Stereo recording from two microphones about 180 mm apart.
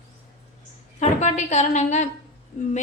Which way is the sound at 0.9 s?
40° left (ahead or behind).